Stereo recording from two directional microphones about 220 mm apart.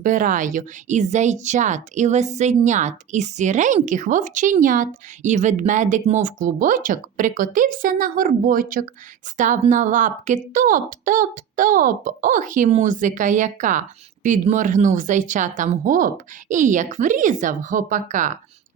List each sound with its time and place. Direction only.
0.0 s a woman's voice: 35° right (ahead or behind)